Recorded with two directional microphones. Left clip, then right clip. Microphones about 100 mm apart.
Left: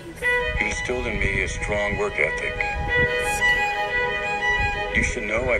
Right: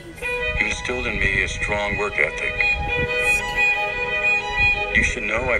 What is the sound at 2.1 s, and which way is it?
Speech, 50° right (ahead or behind).